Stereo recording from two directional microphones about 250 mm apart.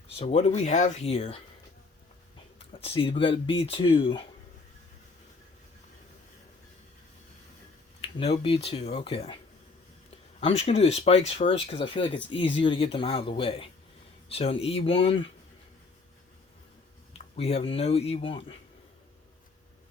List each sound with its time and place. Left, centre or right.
0.2 s speech: left
2.8 s speech: left
8.0 s speech: left
10.4 s speech: left
17.2 s speech: left